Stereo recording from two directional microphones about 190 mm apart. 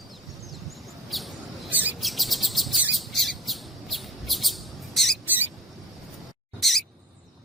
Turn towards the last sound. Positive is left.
turn(degrees=0)  # may be behind; listen again after turning